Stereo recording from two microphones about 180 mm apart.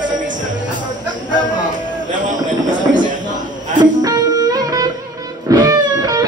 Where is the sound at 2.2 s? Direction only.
45° right (ahead or behind).